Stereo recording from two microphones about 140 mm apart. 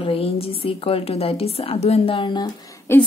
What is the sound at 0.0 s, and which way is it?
A woman's voice, 45° left (ahead or behind).